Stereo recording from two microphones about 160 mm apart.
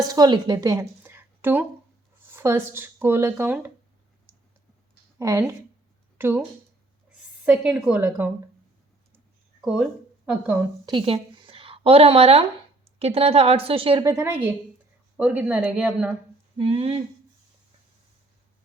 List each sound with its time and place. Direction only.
0.1 s a woman's voice: 25° right (ahead or behind)
5.2 s a woman's voice: 20° right (ahead or behind)
9.6 s speech: 5° right (ahead or behind)
10.8 s a woman's voice: 30° right (ahead or behind)
14.0 s a woman's voice: 20° right (ahead or behind)
16.6 s speech: 35° right (ahead or behind)